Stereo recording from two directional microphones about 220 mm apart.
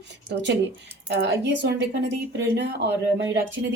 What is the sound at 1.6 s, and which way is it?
Speech, 50° right (ahead or behind).